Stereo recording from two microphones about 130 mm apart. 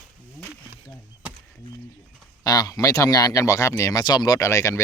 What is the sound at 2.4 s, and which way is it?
Speech, 30° left (ahead or behind).